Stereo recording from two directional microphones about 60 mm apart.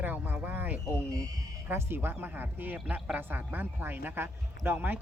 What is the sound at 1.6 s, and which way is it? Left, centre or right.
Speech, right.